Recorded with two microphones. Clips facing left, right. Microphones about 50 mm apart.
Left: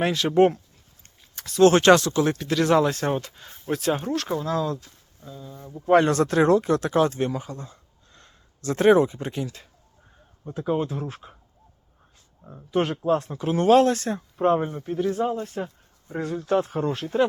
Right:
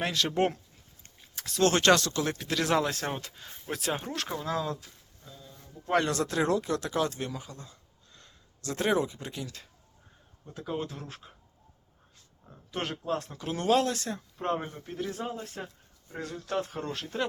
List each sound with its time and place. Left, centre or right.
0.0 s speech: centre
1.2 s a sound: centre
1.6 s speech: left
2.4 s speech: centre
5.2 s speech: centre
5.8 s speech: left
6.1 s speech: left
10.5 s speech: left
12.7 s speech: centre; by 14.4 s left
14.4 s speech: centre
16.0 s speech: left